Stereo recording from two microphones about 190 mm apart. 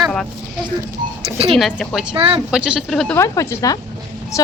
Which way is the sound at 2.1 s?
25° right (ahead or behind).